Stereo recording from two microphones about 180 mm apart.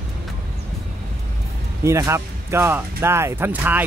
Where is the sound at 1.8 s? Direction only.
15° right (ahead or behind).